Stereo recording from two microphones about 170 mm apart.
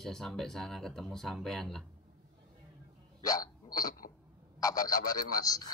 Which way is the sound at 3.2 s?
20° left (ahead or behind).